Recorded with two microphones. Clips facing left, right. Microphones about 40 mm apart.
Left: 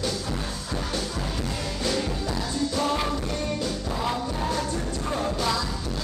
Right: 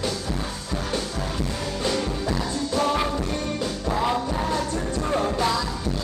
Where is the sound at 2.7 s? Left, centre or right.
Centre.